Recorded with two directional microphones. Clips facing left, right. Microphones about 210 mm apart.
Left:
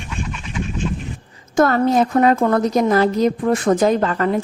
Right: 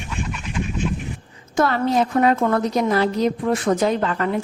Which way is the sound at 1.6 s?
45° left (ahead or behind).